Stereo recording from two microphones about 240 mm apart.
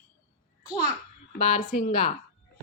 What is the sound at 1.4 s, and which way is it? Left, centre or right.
Speech, left.